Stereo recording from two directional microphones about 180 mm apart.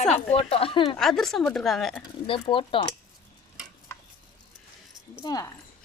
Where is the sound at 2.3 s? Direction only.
30° left (ahead or behind).